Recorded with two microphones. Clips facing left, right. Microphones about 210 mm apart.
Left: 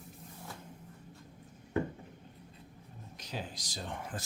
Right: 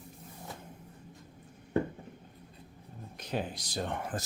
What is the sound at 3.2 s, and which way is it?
Speech, 60° right (ahead or behind).